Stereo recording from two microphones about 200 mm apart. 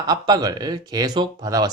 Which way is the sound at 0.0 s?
20° right (ahead or behind).